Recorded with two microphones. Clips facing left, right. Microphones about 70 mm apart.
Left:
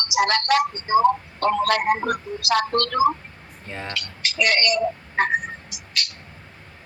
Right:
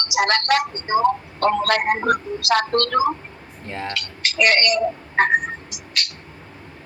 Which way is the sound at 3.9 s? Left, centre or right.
Right.